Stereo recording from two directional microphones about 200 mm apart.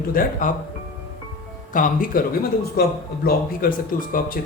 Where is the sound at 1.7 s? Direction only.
45° left (ahead or behind).